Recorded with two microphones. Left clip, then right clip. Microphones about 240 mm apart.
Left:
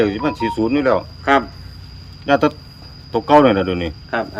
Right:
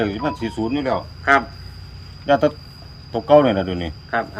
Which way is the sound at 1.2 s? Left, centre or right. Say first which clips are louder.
Right 1 dB; left.